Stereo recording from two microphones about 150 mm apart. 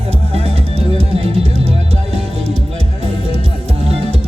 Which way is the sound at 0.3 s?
40° right (ahead or behind).